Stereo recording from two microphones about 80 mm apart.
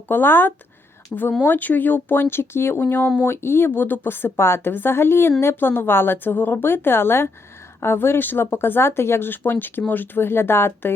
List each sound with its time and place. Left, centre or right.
0.1 s speech: left